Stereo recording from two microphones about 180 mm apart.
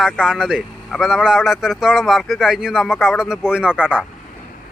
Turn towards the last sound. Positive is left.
turn(degrees=-5)  # may be behind; listen again after turning